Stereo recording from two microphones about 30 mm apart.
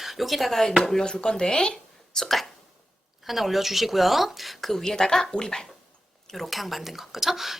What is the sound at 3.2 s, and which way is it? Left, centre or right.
Speech, centre.